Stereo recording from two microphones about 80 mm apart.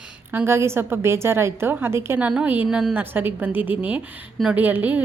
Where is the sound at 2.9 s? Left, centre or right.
Right.